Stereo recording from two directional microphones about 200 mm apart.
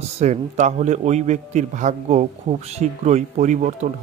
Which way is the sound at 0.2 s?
35° right (ahead or behind).